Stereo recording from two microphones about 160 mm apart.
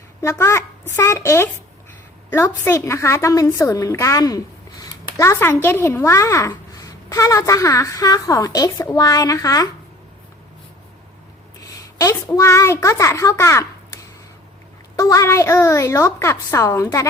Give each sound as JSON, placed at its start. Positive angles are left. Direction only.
{"t": 0.2, "sound": "a woman's voice", "side_deg": 15}
{"t": 11.7, "sound": "a child's voice", "side_deg": 20}